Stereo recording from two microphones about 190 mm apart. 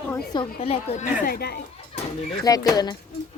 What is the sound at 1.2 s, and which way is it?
Speech, 55° left (ahead or behind).